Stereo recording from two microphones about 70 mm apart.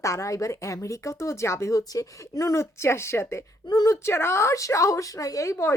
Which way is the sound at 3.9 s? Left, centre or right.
Left.